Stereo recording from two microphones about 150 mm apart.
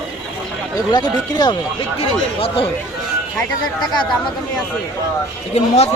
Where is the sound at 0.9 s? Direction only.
25° left (ahead or behind).